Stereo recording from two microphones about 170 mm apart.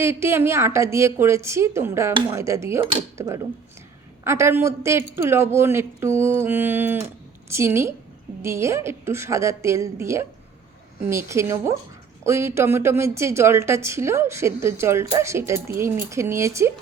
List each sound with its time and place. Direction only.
0.0 s a woman's voice: 15° right (ahead or behind)